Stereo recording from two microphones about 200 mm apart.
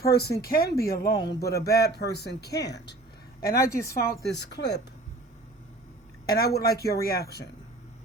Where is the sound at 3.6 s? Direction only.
15° left (ahead or behind).